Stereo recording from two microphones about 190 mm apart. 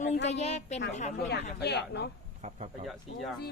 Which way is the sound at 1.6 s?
60° left (ahead or behind).